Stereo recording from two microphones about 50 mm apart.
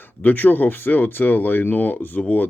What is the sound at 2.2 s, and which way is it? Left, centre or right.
Speech, left.